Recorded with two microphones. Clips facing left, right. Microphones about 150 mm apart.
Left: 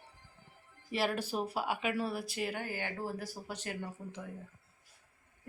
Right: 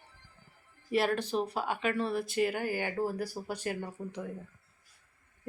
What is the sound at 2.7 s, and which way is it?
Speech, 45° right (ahead or behind).